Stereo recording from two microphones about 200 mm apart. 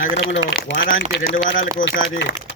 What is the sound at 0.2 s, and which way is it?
Speech, 65° left (ahead or behind).